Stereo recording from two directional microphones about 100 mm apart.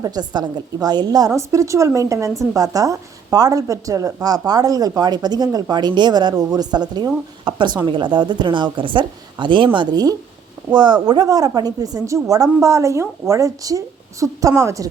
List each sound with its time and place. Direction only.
0.0 s a woman's voice: 45° right (ahead or behind)